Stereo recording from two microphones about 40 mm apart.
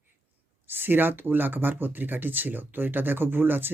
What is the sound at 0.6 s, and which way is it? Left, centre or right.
Speech, right.